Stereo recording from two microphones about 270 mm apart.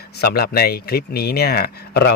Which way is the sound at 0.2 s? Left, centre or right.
Left.